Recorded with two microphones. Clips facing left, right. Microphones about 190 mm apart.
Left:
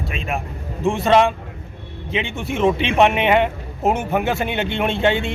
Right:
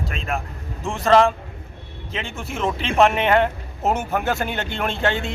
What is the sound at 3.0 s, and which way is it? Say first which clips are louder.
A man's voice: even; 15° left (ahead or behind).